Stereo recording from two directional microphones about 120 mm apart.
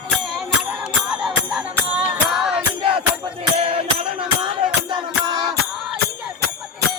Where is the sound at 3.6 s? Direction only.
50° right (ahead or behind).